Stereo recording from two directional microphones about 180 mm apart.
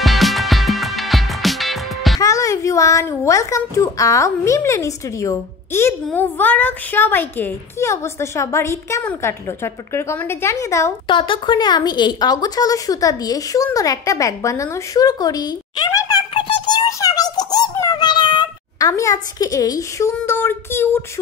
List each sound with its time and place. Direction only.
0.0 s music: centre (ahead or behind)
2.1 s a child's voice: 20° left (ahead or behind)
11.1 s a woman's voice: 30° left (ahead or behind); by 21.0 s 15° left (ahead or behind)